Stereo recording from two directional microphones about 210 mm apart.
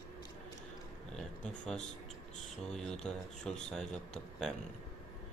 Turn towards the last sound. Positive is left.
turn(degrees=0)  # may be behind; listen again after turning